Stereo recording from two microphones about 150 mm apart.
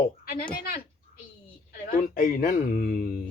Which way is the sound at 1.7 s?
70° left (ahead or behind).